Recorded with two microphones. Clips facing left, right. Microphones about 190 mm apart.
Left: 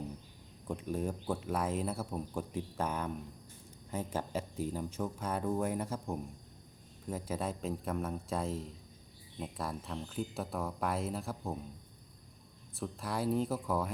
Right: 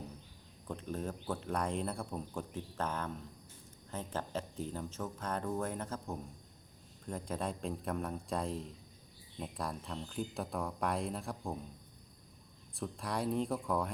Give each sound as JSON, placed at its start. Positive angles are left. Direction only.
{"t": 0.7, "sound": "speech", "side_deg": 10}
{"t": 12.7, "sound": "speech", "side_deg": 0}